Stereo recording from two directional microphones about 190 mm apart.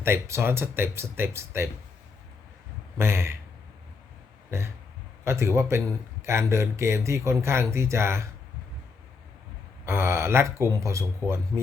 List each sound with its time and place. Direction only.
0.0 s speech: 15° right (ahead or behind)
3.0 s speech: 15° right (ahead or behind)
4.5 s speech: 15° right (ahead or behind)
9.8 s speech: 15° right (ahead or behind)